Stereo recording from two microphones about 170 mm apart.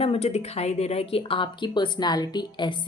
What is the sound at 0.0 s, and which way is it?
Speech, 35° left (ahead or behind).